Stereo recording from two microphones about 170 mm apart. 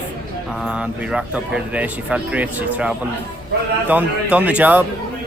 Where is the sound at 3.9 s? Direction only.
10° right (ahead or behind).